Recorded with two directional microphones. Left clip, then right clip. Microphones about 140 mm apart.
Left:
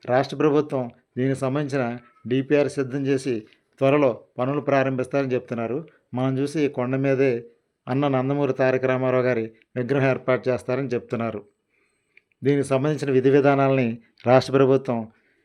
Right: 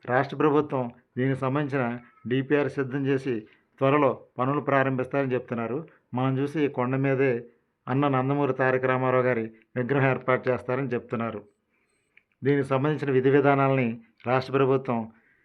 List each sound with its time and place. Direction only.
0.0 s speech: 25° left (ahead or behind)